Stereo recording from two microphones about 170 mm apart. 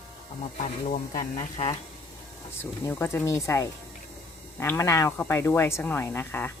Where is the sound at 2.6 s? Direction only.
15° left (ahead or behind).